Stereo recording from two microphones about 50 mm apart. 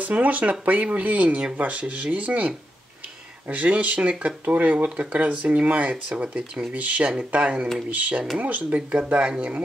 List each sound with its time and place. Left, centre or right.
0.0 s speech: right